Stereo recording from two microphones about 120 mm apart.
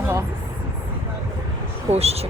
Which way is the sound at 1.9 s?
60° right (ahead or behind).